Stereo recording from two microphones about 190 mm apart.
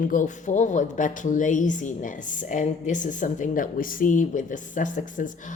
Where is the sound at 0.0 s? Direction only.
45° left (ahead or behind).